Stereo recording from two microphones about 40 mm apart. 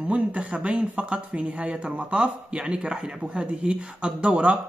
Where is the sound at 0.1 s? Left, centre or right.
Right.